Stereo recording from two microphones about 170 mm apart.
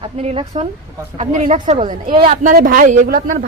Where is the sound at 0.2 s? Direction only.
40° right (ahead or behind).